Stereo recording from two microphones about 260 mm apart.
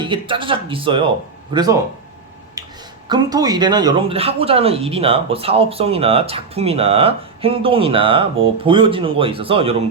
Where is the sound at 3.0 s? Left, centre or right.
Centre.